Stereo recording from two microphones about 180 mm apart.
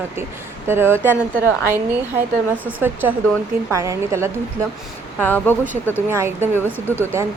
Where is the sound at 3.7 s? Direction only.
15° right (ahead or behind).